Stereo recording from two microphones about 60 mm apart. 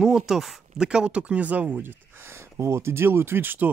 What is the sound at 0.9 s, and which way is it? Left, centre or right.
Speech, centre.